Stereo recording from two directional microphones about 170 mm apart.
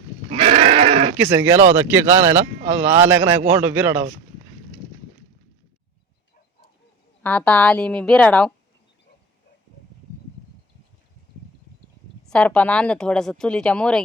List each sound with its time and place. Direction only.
0.3 s goat: 30° right (ahead or behind)
1.1 s speech: 10° right (ahead or behind)
7.2 s a woman's voice: 10° left (ahead or behind)
12.3 s speech: 5° left (ahead or behind)